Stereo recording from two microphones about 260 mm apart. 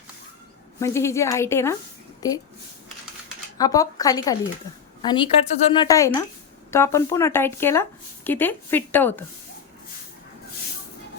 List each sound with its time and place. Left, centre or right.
0.8 s speech: centre
3.6 s speech: centre